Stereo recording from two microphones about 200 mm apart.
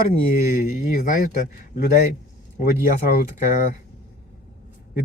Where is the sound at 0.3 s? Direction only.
40° left (ahead or behind).